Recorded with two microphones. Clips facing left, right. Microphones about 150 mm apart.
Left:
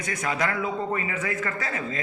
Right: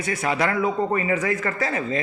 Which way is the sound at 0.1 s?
30° right (ahead or behind).